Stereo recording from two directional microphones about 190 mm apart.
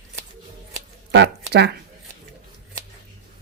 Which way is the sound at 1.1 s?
60° right (ahead or behind).